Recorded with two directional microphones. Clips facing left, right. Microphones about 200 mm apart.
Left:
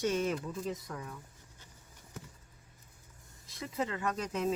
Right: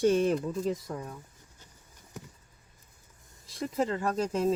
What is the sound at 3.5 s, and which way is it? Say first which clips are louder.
Speech: right 6 dB; 40° right (ahead or behind).